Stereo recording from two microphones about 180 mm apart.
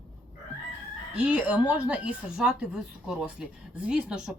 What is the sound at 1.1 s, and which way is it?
Speech, 5° right (ahead or behind).